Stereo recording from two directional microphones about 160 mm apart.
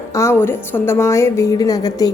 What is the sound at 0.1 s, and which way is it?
A woman's voice, 15° left (ahead or behind).